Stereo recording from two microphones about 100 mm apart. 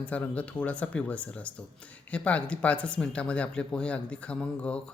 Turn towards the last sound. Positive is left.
turn(degrees=10)  # may be behind; listen again after turning